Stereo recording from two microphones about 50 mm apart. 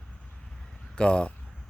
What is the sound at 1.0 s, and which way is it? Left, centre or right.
Speech, centre.